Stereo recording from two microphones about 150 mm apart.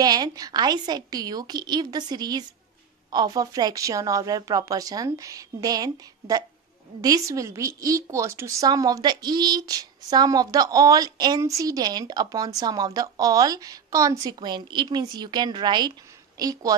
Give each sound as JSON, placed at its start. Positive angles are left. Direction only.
{"t": 0.0, "sound": "a woman's voice", "side_deg": -25}